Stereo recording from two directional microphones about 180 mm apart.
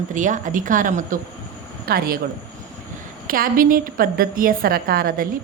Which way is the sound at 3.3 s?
50° right (ahead or behind).